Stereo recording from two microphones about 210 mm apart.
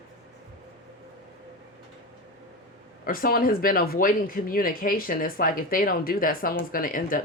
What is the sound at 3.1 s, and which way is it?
Speech, 45° left (ahead or behind).